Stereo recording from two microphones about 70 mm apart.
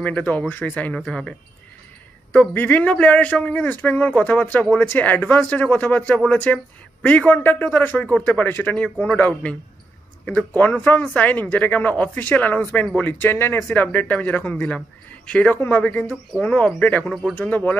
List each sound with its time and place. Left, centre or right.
0.0 s a man's voice: left
2.5 s a man's voice: left
3.8 s a man's voice: left
15.5 s speech: left